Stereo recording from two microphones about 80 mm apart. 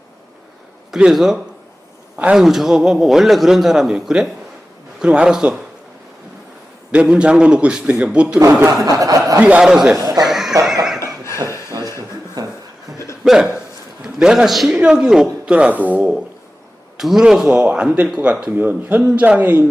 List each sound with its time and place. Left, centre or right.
0.9 s speech: centre
2.1 s a man's voice: centre
2.4 s speech: centre
6.9 s speech: centre
9.0 s speech: right
9.4 s speech: centre
9.9 s speech: right
10.2 s a sound: centre
11.9 s a sound: right
13.2 s a man's voice: centre
14.7 s speech: centre
17.0 s speech: centre
18.5 s speech: right